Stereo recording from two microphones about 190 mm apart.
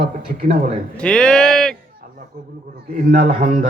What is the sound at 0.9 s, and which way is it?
Speech, 5° left (ahead or behind).